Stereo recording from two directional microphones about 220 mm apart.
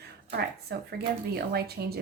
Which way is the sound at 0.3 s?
50° right (ahead or behind).